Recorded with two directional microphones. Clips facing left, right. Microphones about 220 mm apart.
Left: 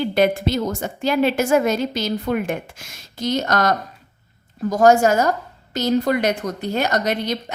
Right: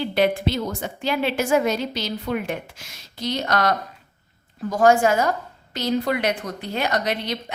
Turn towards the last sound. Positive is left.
turn(degrees=45)  # may be behind; listen again after turning